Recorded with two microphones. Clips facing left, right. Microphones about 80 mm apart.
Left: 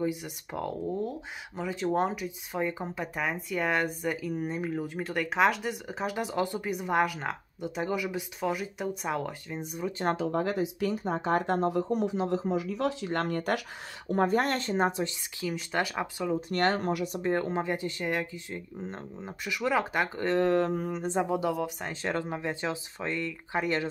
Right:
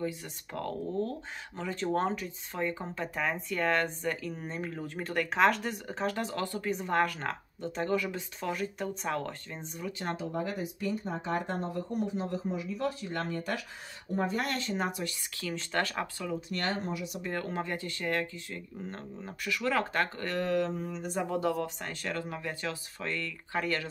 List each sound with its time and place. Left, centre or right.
0.0 s speech: centre
10.0 s speech: left
13.1 s speech: left
14.2 s speech: left
15.4 s speech: centre
16.3 s speech: left
17.0 s speech: left
20.7 s speech: left
21.0 s speech: left
21.3 s speech: centre
22.1 s speech: left